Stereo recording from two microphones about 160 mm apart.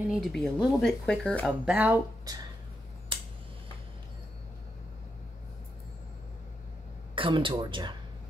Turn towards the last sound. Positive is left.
turn(degrees=-30)  # may be behind; listen again after turning